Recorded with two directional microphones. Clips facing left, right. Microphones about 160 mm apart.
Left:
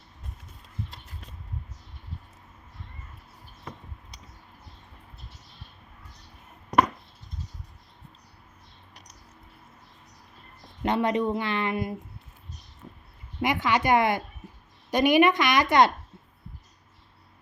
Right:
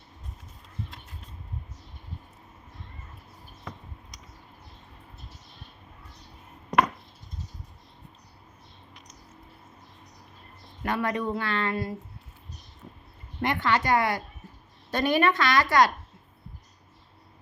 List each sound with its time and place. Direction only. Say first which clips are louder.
10.8 s speech: left 4 dB; 20° left (ahead or behind)
13.4 s speech: left 1 dB; 15° left (ahead or behind)